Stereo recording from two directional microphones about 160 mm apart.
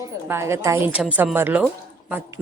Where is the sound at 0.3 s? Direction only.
15° right (ahead or behind).